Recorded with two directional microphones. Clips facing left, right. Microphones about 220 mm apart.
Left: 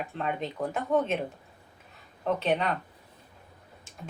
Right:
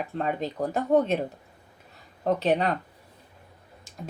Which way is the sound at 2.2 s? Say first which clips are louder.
Right 3 dB; 35° right (ahead or behind).